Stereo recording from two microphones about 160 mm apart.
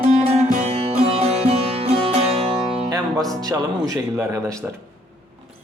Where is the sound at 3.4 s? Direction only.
20° right (ahead or behind).